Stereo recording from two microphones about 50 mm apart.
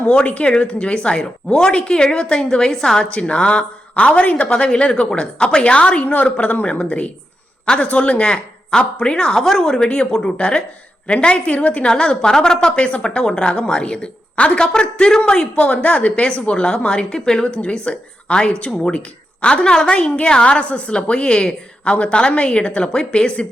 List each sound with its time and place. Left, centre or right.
0.0 s a woman's voice: left
3.1 s a woman's voice: left